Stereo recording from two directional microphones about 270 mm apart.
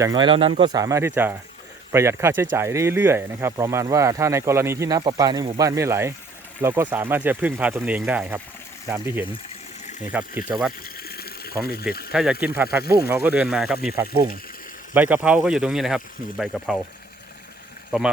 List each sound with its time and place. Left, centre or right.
0.0 s speech: centre
10.8 s water: left
12.1 s speech: centre